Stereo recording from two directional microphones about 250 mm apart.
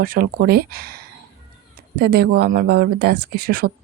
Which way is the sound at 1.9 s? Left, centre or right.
Right.